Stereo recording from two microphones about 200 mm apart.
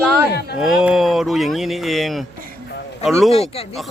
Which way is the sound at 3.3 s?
30° left (ahead or behind).